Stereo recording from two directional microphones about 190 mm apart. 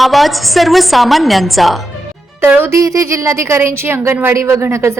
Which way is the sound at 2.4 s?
10° right (ahead or behind).